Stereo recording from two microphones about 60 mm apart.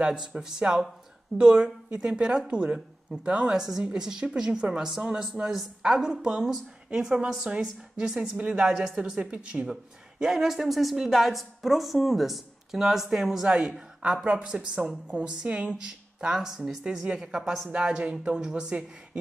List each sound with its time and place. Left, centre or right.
0.0 s speech: centre
8.9 s speech: right